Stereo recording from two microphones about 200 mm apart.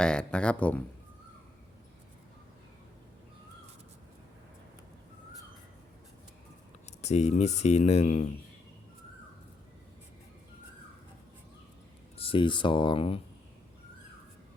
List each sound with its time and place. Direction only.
0.0 s speech: 5° left (ahead or behind)
7.0 s speech: 35° left (ahead or behind)
12.1 s speech: 30° left (ahead or behind)